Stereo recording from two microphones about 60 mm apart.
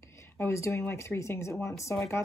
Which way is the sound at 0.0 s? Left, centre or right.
Left.